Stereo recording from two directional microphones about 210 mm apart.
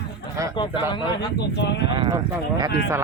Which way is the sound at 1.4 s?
55° left (ahead or behind).